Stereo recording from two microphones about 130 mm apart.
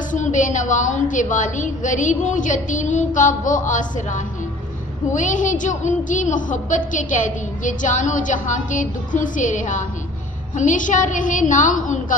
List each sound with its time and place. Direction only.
0.1 s a woman's voice: 75° left (ahead or behind)
3.2 s a woman's voice: 80° left